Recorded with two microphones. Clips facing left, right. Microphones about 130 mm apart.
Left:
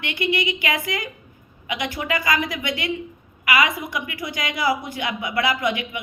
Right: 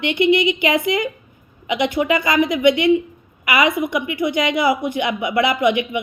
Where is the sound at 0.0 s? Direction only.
20° right (ahead or behind).